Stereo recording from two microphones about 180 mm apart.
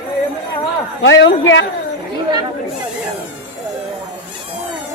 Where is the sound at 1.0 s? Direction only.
90° left.